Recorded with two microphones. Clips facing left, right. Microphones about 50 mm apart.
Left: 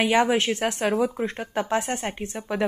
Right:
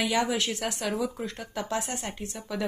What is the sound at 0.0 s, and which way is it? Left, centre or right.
Speech, left.